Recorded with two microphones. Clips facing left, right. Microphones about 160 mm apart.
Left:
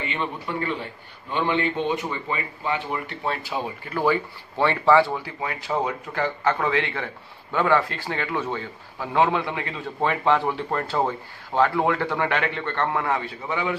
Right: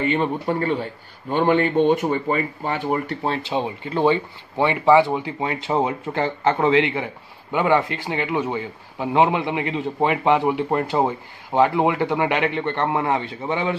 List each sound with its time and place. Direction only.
0.0 s speech: 45° right (ahead or behind)
3.3 s a man's voice: 25° right (ahead or behind)